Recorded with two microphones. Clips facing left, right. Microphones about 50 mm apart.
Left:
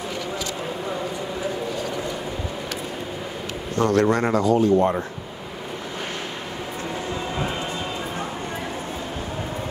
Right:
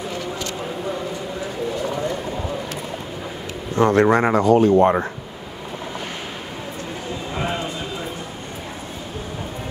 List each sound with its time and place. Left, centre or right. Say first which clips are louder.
3.7 s speech: right 4 dB; right
4.5 s speech: right 4 dB; right